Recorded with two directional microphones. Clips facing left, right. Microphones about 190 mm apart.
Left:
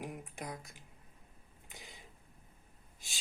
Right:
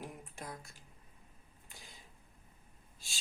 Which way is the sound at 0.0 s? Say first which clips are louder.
Left 3 dB; 15° left (ahead or behind).